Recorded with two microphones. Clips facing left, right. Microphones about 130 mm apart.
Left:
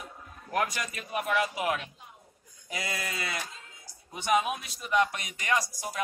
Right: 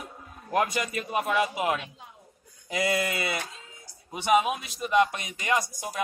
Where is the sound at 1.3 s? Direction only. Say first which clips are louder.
Right 2 dB; 25° right (ahead or behind).